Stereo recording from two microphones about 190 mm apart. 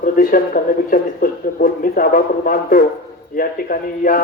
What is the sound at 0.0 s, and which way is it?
Speech, 45° left (ahead or behind).